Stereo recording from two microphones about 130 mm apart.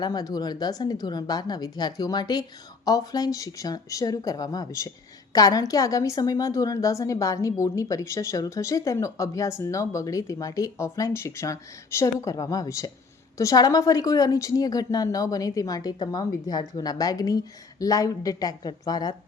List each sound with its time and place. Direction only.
0.0 s a woman's voice: 30° left (ahead or behind)